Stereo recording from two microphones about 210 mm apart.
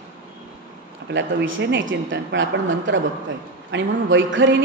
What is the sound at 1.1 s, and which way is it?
A woman's voice, 60° right (ahead or behind).